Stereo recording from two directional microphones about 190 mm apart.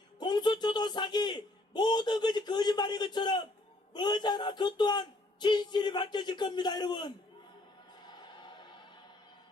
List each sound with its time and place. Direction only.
0.2 s a sound: 25° left (ahead or behind)
3.9 s speech: 20° left (ahead or behind)
8.0 s music: 20° left (ahead or behind)